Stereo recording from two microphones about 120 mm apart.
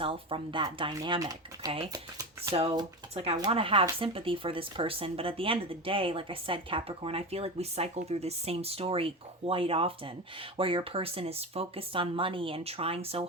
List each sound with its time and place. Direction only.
0.0 s speech: 50° right (ahead or behind)
1.2 s speech: 30° right (ahead or behind)
2.5 s speech: 50° right (ahead or behind)